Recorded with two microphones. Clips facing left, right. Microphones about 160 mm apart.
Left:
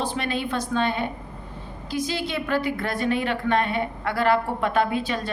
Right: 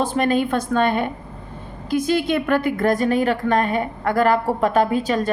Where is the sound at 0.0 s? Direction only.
45° right (ahead or behind).